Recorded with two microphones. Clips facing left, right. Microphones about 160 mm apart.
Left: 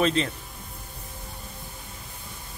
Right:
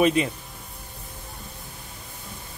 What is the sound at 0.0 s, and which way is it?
Speech, 15° right (ahead or behind).